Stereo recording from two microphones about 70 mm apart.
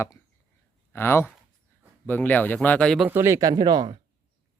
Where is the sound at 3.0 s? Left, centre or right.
Right.